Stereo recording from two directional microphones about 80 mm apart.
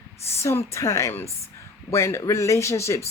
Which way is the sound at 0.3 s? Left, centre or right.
Left.